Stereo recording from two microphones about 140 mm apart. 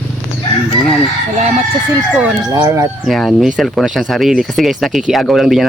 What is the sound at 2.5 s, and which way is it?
Speech, 25° right (ahead or behind).